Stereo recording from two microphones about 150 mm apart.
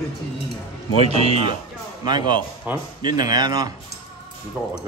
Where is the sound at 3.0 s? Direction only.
25° right (ahead or behind).